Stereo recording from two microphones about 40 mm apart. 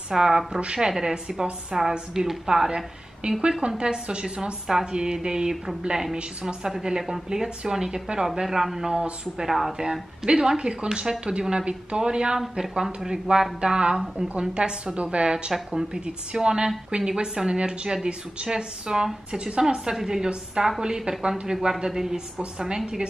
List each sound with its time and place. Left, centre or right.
0.1 s a woman's voice: centre
9.5 s a woman's voice: centre
9.8 s a woman's voice: right
12.4 s a woman's voice: centre